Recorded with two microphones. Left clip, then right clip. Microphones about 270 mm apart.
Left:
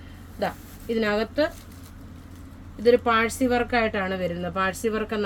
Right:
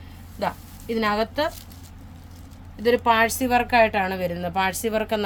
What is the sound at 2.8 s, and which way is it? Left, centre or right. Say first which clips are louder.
Speech: right 1 dB; right.